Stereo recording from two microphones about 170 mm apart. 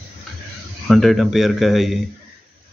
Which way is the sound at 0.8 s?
Centre (ahead or behind).